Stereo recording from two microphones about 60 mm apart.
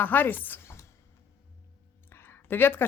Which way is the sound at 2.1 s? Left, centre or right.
Left.